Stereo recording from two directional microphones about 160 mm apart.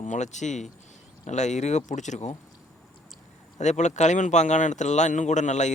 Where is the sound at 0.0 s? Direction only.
50° left (ahead or behind).